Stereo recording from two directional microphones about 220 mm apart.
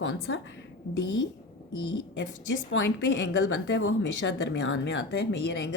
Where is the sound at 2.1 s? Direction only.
55° left (ahead or behind).